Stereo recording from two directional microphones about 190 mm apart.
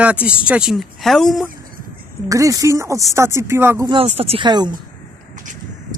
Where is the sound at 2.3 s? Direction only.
15° right (ahead or behind).